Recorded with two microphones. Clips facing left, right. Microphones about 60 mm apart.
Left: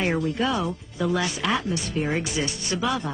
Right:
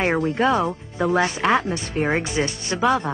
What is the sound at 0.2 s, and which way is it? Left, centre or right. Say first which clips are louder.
A woman's voice: right 5 dB; right.